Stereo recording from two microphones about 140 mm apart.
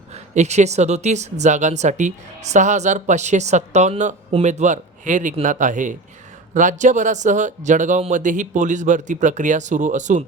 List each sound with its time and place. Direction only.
0.1 s speech: 55° right (ahead or behind)